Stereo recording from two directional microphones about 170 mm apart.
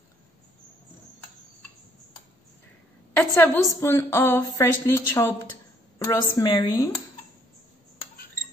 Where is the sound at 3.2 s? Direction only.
15° left (ahead or behind).